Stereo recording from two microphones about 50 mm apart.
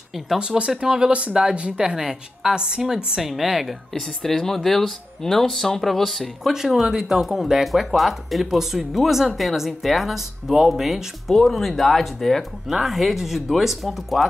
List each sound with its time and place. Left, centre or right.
0.4 s speech: centre
3.2 s speech: centre
3.9 s speech: centre
6.4 s speech: centre